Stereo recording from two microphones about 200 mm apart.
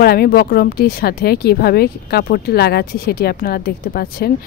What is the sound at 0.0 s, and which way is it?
Speech, 50° left (ahead or behind).